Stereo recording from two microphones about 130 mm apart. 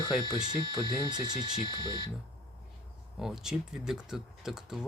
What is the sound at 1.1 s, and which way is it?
Speech, 30° right (ahead or behind).